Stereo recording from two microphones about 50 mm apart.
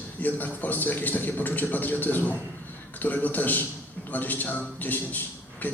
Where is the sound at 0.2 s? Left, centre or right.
Left.